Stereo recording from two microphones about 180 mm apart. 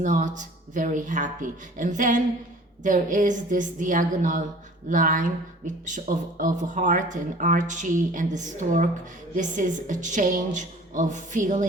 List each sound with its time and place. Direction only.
0.0 s speech: 45° right (ahead or behind)